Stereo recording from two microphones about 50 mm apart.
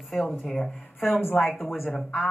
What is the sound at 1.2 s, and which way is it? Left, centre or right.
Speech, left.